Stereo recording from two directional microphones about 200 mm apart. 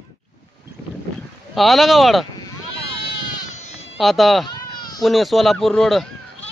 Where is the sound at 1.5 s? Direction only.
Centre (ahead or behind).